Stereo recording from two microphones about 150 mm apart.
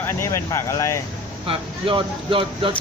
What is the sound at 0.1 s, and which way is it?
Speech, 20° left (ahead or behind).